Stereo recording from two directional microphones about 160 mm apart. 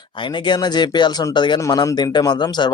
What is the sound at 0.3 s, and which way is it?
Speech, 30° left (ahead or behind).